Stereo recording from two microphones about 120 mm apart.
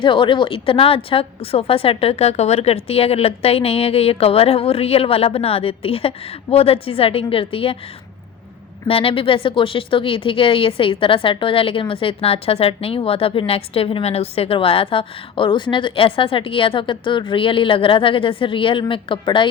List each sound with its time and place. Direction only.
0.0 s a woman's voice: 40° left (ahead or behind)
8.9 s a woman's voice: 50° left (ahead or behind)